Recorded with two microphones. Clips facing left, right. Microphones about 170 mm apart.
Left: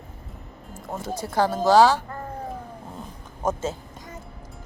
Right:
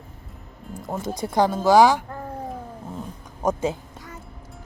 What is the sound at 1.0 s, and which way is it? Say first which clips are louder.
Speech: right 2 dB; 15° right (ahead or behind).